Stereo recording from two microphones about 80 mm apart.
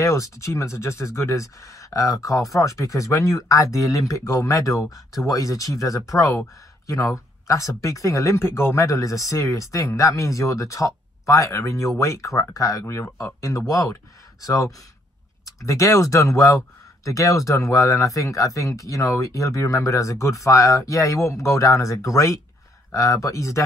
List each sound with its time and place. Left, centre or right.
0.0 s speech: left